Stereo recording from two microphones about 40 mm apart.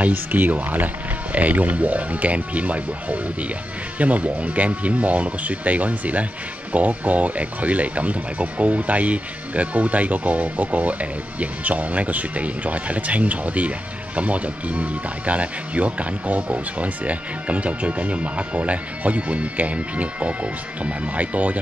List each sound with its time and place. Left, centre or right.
0.1 s speech: right